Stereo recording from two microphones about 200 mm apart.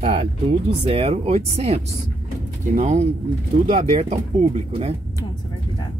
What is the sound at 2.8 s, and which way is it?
Speech, 35° right (ahead or behind).